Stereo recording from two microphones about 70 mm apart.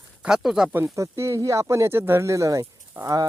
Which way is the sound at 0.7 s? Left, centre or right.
Right.